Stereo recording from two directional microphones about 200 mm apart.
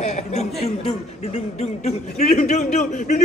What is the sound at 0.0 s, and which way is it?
Speech, 35° left (ahead or behind).